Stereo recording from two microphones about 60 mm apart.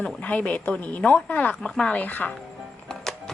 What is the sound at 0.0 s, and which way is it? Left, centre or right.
Speech, left.